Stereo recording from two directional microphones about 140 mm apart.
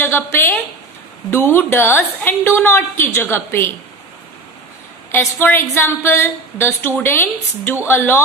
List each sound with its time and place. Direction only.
0.0 s a woman's voice: 15° left (ahead or behind)
5.1 s a woman's voice: 15° left (ahead or behind)